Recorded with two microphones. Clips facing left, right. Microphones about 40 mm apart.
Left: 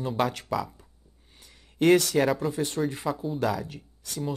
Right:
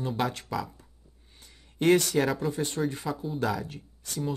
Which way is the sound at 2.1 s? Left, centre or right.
Centre.